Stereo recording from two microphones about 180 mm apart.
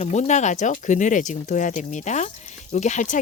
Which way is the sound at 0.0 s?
40° left (ahead or behind).